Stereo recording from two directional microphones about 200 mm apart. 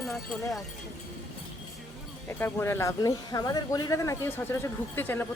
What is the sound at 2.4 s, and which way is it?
A woman's voice, 10° left (ahead or behind).